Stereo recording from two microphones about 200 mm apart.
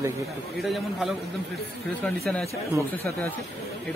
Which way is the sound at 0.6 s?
Centre (ahead or behind).